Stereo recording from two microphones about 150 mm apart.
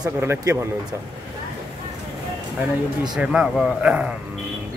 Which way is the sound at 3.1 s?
5° right (ahead or behind).